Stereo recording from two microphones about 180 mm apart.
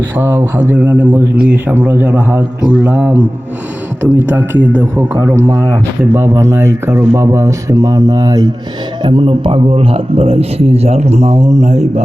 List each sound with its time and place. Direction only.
0.2 s speech: 10° right (ahead or behind); by 12.0 s 40° right (ahead or behind)